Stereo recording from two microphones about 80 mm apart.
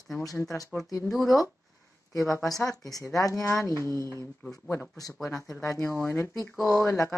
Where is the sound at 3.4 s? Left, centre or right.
Left.